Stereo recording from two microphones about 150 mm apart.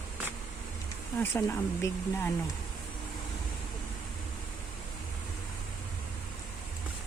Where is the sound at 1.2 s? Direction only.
20° left (ahead or behind).